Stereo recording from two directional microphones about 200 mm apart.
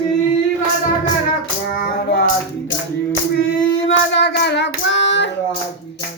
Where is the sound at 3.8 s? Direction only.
60° left (ahead or behind).